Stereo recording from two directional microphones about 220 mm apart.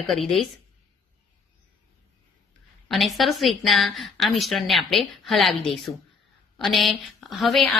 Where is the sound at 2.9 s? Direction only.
Centre (ahead or behind).